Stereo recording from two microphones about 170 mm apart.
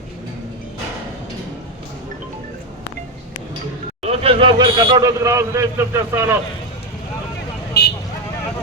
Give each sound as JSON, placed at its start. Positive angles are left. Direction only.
{"t": 4.0, "sound": "a man's voice", "side_deg": -35}
{"t": 7.7, "sound": "vehicle", "side_deg": 70}